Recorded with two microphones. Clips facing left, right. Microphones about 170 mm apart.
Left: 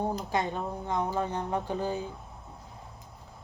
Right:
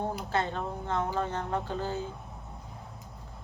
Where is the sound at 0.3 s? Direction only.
15° left (ahead or behind).